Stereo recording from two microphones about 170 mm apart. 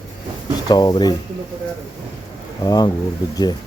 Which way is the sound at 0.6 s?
25° left (ahead or behind).